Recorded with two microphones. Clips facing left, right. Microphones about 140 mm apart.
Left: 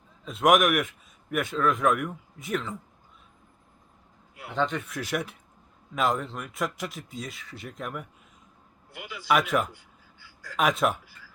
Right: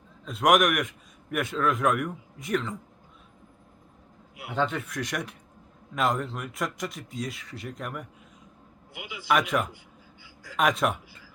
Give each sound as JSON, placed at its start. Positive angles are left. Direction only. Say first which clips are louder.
{"t": 0.3, "sound": "a man's voice", "louder": "left 1 dB", "side_deg": 0}
{"t": 4.4, "sound": "a man's voice", "louder": "even", "side_deg": -5}
{"t": 8.9, "sound": "a man's voice", "louder": "even", "side_deg": -15}
{"t": 9.7, "sound": "a sound", "louder": "right 4 dB", "side_deg": -15}
{"t": 10.6, "sound": "a man's voice", "louder": "even", "side_deg": 0}